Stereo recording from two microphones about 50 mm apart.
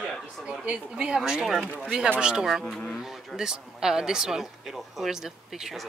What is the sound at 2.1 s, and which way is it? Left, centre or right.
Speech, centre.